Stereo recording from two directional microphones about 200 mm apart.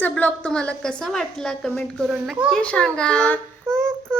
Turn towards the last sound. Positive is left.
turn(degrees=0)  # may be behind; listen again after turning